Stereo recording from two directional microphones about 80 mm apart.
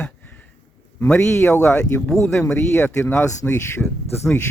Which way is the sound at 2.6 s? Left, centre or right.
Left.